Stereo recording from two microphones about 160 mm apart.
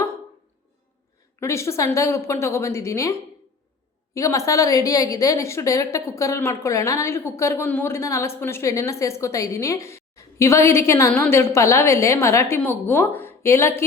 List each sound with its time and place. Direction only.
1.4 s a woman's voice: 15° left (ahead or behind)